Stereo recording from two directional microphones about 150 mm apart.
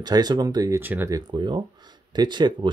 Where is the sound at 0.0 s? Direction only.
25° right (ahead or behind).